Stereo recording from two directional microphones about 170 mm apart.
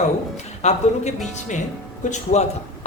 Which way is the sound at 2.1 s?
45° left (ahead or behind).